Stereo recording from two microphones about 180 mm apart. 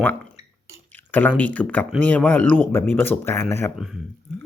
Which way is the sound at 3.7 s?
Centre (ahead or behind).